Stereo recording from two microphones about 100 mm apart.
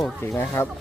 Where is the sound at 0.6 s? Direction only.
25° left (ahead or behind).